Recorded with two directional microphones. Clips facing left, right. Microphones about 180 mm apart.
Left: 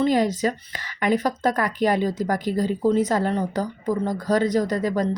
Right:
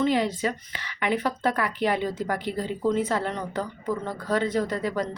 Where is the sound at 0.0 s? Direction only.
40° left (ahead or behind).